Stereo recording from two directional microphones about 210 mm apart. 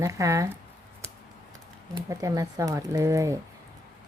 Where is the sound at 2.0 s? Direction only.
15° right (ahead or behind).